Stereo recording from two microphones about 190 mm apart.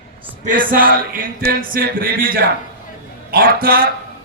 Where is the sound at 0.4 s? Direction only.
45° right (ahead or behind).